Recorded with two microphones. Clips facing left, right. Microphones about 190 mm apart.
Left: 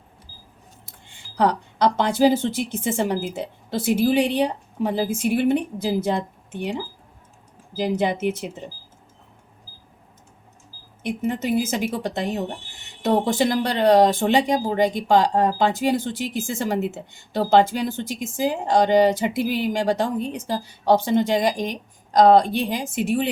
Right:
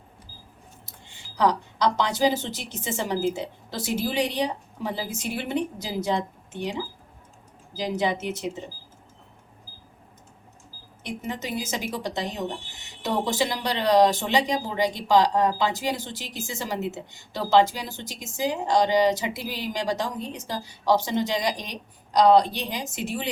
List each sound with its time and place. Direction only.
1.4 s a woman's voice: 55° left (ahead or behind)
7.8 s a woman's voice: 55° left (ahead or behind)
11.0 s a woman's voice: 55° left (ahead or behind)